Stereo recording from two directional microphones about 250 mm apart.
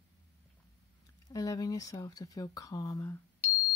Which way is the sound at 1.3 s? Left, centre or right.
Centre.